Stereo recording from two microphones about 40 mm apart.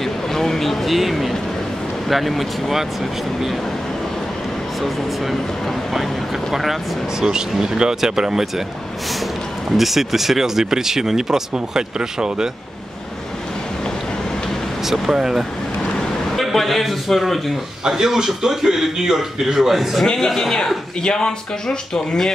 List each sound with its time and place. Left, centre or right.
0.0 s a sound: centre
2.0 s speech: centre
6.5 s speech: centre
7.2 s speech: centre
9.8 s speech: centre
14.9 s speech: centre
16.3 s a man's voice: centre
17.8 s speech: centre
20.5 s speech: centre